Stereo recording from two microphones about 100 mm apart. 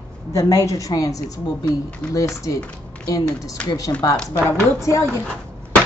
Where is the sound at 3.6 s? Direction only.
35° left (ahead or behind).